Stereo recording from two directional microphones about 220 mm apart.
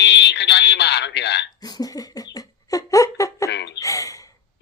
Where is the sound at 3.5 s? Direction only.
50° left (ahead or behind).